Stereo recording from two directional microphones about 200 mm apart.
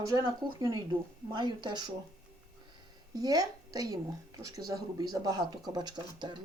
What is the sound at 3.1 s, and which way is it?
Speech, 20° right (ahead or behind).